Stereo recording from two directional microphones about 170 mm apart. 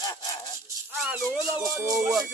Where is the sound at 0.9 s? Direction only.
Centre (ahead or behind).